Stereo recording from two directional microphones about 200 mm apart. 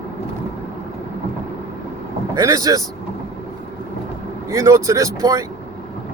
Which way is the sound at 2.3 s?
20° right (ahead or behind).